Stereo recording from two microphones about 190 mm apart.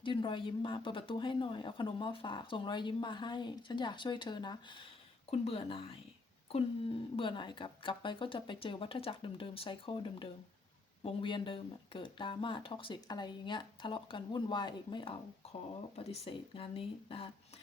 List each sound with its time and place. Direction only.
0.0 s speech: 25° left (ahead or behind)
7.2 s speech: 25° left (ahead or behind)